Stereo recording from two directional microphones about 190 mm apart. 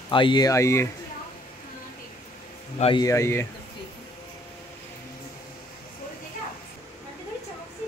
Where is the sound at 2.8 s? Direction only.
30° left (ahead or behind).